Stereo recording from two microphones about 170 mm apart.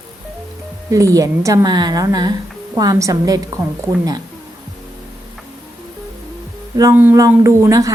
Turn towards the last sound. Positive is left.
turn(degrees=-20)  # may be behind; listen again after turning